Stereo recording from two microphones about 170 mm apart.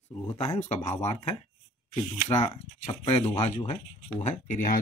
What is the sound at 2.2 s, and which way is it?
Speech, 40° left (ahead or behind).